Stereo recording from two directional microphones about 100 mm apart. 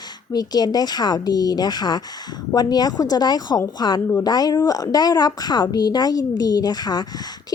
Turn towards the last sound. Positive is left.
turn(degrees=45)  # may be behind; listen again after turning